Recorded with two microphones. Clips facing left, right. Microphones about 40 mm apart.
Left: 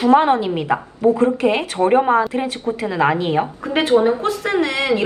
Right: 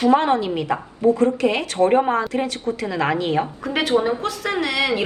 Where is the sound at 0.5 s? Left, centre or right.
Centre.